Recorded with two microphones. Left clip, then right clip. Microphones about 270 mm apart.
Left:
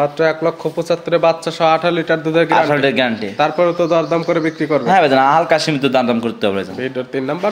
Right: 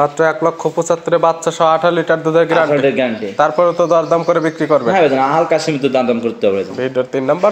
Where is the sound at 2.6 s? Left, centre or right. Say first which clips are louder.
Right 1 dB; left.